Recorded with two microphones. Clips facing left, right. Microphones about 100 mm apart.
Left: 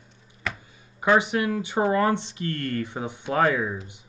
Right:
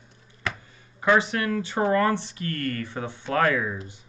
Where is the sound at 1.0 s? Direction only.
15° left (ahead or behind).